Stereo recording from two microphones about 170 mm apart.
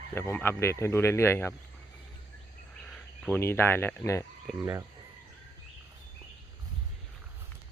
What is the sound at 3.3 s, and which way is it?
Speech, 15° left (ahead or behind).